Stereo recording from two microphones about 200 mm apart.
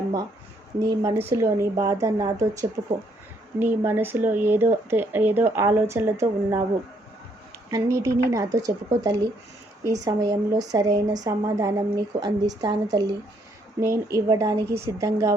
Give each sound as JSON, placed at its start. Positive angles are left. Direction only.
{"t": 0.9, "sound": "speech", "side_deg": -15}
{"t": 7.7, "sound": "speech", "side_deg": -15}